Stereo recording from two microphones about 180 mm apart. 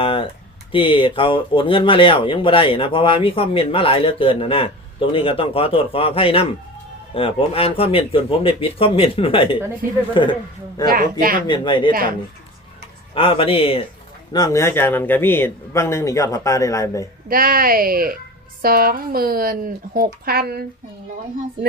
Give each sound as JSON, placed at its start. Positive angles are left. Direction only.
{"t": 0.0, "sound": "a sound", "side_deg": 30}
{"t": 0.7, "sound": "speech", "side_deg": 30}
{"t": 10.8, "sound": "speech", "side_deg": -55}
{"t": 11.4, "sound": "speech", "side_deg": 25}
{"t": 11.9, "sound": "speech", "side_deg": -55}
{"t": 13.1, "sound": "speech", "side_deg": 30}
{"t": 14.3, "sound": "speech", "side_deg": 20}
{"t": 17.2, "sound": "speech", "side_deg": -55}